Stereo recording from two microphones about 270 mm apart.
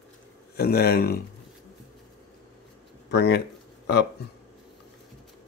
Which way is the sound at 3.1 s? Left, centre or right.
Left.